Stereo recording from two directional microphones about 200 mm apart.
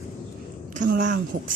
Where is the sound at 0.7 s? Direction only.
40° right (ahead or behind).